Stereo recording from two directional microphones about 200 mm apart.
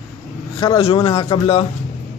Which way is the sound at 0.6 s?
20° left (ahead or behind).